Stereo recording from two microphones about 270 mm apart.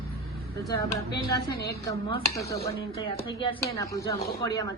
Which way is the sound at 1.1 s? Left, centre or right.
Left.